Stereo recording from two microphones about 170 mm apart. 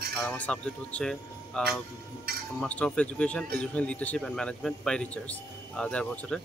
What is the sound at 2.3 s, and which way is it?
Speech, 65° right (ahead or behind).